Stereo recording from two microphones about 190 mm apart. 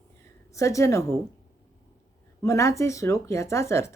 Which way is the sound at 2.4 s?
15° left (ahead or behind).